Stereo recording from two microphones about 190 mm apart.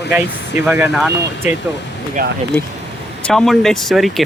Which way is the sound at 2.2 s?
45° right (ahead or behind).